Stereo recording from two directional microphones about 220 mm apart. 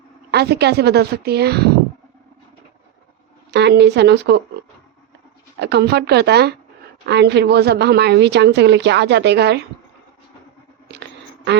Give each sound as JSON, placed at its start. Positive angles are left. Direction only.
{"t": 0.3, "sound": "a woman's voice", "side_deg": -50}
{"t": 3.5, "sound": "a woman's voice", "side_deg": -50}
{"t": 5.5, "sound": "a woman's voice", "side_deg": -50}